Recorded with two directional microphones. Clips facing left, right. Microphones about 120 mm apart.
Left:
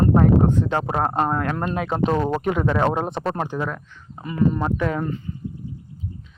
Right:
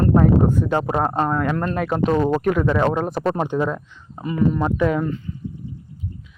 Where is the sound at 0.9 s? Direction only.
5° left (ahead or behind).